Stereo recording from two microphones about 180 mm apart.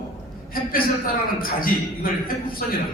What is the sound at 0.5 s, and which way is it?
A man's voice, 55° left (ahead or behind).